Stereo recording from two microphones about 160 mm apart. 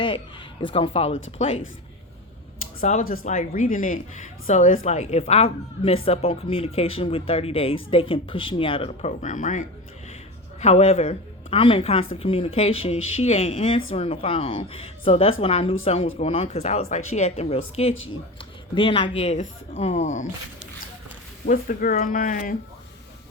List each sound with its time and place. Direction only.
0.0 s a woman's voice: 30° left (ahead or behind)
3.0 s speech: 65° left (ahead or behind)
4.9 s speech: 45° left (ahead or behind)
10.6 s speech: 40° left (ahead or behind)
21.4 s speech: 60° left (ahead or behind)